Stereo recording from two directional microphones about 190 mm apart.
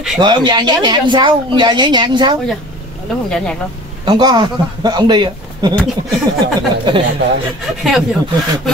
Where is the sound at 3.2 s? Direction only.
5° left (ahead or behind).